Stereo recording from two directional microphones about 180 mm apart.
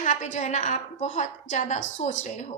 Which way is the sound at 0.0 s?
45° left (ahead or behind).